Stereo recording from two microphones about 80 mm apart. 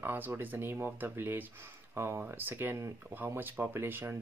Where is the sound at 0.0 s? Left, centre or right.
Right.